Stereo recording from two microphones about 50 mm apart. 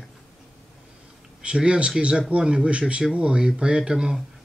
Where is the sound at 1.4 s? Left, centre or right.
Right.